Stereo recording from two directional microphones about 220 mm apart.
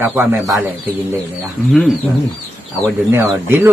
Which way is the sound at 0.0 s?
10° right (ahead or behind).